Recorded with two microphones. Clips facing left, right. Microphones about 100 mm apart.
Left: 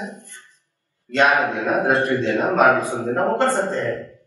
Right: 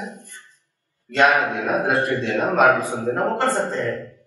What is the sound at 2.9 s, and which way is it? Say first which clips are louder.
Speech: left 2 dB; 15° left (ahead or behind).